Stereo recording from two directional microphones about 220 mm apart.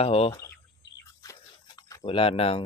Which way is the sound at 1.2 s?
15° left (ahead or behind).